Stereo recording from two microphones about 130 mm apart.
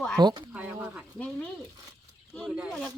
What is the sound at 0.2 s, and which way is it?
Speech, 35° right (ahead or behind).